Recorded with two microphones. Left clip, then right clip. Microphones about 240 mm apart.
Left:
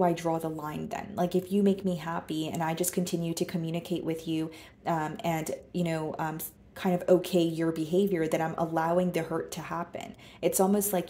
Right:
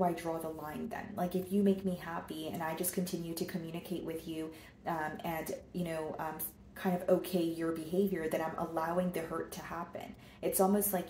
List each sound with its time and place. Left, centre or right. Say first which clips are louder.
0.0 s speech: left 7 dB; left